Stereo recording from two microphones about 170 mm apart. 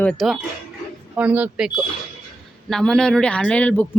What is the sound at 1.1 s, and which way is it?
A woman's voice, 10° right (ahead or behind).